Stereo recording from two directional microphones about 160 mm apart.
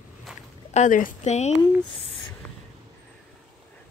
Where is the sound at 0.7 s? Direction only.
55° left (ahead or behind).